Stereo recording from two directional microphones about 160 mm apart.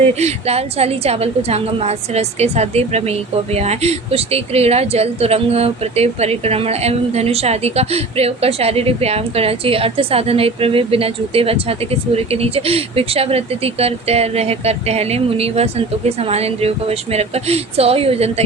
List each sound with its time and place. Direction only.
0.2 s a woman's voice: 40° right (ahead or behind)